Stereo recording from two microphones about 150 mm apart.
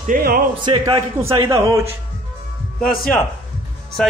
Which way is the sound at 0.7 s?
35° right (ahead or behind).